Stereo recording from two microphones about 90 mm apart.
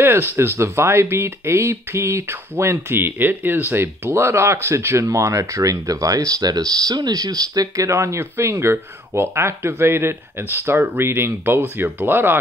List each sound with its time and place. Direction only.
0.0 s speech: 25° right (ahead or behind)